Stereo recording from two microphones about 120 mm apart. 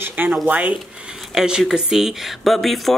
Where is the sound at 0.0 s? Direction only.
15° right (ahead or behind).